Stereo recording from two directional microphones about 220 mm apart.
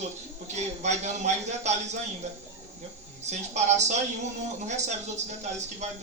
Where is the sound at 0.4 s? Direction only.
30° right (ahead or behind).